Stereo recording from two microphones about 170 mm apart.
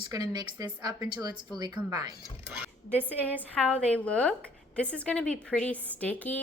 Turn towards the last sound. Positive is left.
turn(degrees=10)  # may be behind; listen again after turning